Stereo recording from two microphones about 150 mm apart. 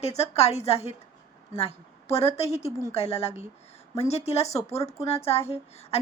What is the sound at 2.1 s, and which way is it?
A woman's voice, 40° left (ahead or behind).